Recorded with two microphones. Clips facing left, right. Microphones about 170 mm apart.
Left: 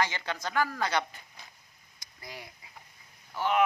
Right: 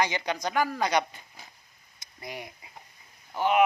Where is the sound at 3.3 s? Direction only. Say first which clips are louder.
Right 4 dB; 20° right (ahead or behind).